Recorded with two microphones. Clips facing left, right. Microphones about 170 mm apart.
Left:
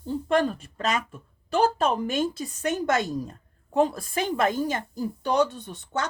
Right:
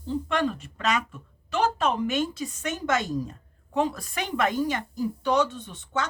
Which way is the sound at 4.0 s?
30° left (ahead or behind).